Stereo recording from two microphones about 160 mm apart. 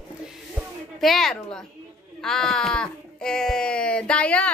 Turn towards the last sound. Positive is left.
turn(degrees=5)  # may be behind; listen again after turning